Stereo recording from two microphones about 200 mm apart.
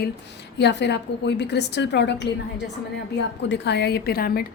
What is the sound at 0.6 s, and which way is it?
A woman's voice, 60° left (ahead or behind).